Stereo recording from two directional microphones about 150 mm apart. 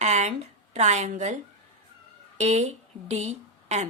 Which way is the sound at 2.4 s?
45° right (ahead or behind).